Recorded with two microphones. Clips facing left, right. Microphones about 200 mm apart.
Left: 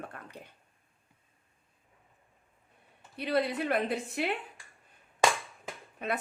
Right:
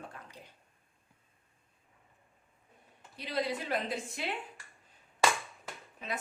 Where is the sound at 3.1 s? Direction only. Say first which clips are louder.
Left 5 dB; 60° left (ahead or behind).